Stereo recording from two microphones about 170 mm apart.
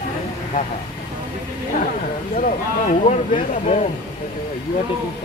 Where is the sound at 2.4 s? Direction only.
45° left (ahead or behind).